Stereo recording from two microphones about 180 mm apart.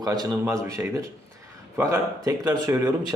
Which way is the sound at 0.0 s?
20° right (ahead or behind).